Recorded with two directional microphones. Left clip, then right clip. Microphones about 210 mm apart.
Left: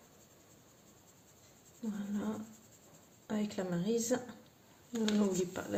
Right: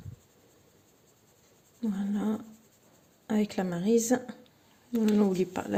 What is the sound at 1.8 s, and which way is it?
A woman's voice, 40° right (ahead or behind).